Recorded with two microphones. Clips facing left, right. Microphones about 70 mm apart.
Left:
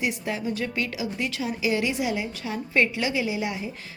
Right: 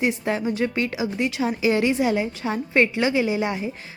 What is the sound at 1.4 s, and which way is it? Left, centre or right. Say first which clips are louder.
A woman's voice: right 5 dB; right.